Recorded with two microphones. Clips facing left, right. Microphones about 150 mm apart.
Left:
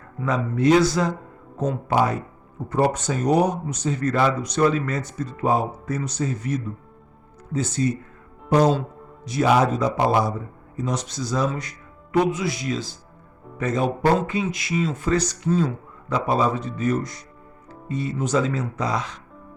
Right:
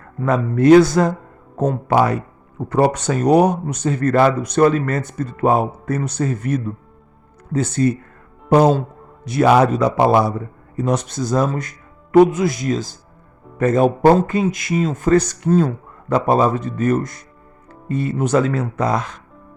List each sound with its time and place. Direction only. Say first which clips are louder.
0.2 s speech: right 6 dB; 55° right (ahead or behind)